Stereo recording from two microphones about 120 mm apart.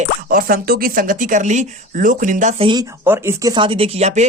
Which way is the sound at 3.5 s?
50° right (ahead or behind).